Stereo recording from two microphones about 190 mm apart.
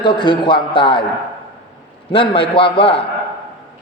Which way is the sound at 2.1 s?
25° left (ahead or behind).